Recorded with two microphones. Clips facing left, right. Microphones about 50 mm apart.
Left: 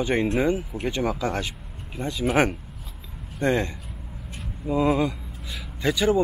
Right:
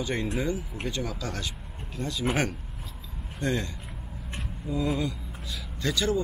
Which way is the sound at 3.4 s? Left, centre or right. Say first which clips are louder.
Left 6 dB; left.